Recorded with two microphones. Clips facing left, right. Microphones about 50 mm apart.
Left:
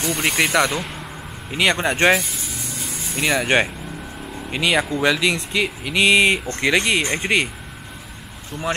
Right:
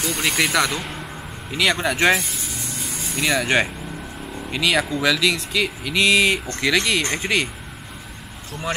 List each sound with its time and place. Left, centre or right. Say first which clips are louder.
0.0 s speech: left 1 dB; centre
1.5 s speech: left 1 dB; centre
2.0 s vehicle: left 1 dB; centre
3.2 s speech: left 1 dB; centre